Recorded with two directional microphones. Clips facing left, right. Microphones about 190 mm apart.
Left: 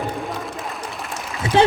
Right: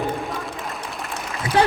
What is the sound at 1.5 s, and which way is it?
Speech, 25° left (ahead or behind).